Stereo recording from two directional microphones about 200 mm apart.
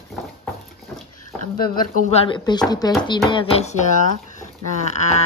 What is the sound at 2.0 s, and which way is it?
Speech, 30° left (ahead or behind).